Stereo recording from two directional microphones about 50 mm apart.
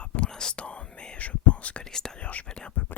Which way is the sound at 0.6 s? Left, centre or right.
Left.